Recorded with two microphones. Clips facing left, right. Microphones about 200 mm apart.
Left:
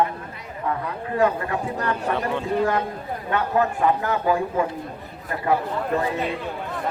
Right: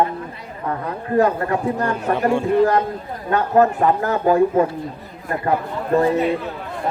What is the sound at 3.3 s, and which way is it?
Speech, 40° right (ahead or behind).